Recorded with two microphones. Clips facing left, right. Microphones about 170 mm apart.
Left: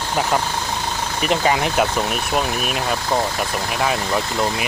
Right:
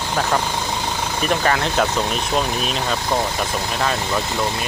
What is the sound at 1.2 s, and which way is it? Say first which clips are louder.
Speech: left 1 dB; 15° left (ahead or behind).